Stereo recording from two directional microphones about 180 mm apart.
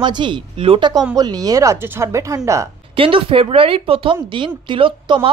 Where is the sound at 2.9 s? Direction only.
30° right (ahead or behind).